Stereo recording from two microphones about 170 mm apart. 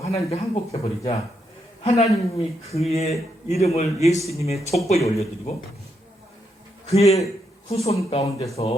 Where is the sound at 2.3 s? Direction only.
35° left (ahead or behind).